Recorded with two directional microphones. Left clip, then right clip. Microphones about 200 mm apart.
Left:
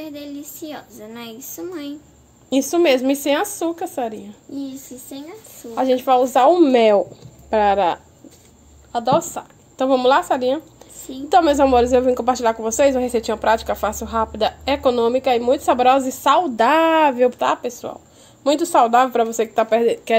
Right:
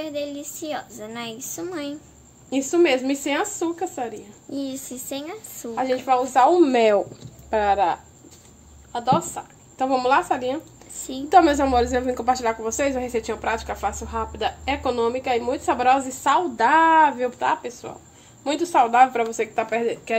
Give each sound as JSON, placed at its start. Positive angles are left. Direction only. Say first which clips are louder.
{"t": 0.0, "sound": "a woman's voice", "louder": "right 3 dB", "side_deg": -10}
{"t": 2.5, "sound": "a woman's voice", "louder": "left 3 dB", "side_deg": 45}
{"t": 4.5, "sound": "a child's voice", "louder": "right 1 dB", "side_deg": -20}
{"t": 5.8, "sound": "a woman's voice", "louder": "left 5 dB", "side_deg": 45}
{"t": 6.6, "sound": "a woman's voice", "louder": "left 4 dB", "side_deg": 25}